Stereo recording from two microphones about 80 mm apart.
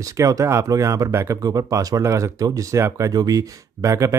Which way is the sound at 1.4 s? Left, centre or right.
Right.